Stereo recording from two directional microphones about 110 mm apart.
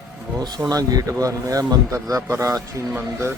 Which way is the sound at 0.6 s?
35° right (ahead or behind).